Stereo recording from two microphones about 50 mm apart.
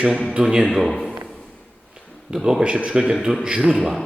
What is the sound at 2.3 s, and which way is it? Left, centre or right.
A man's voice, centre.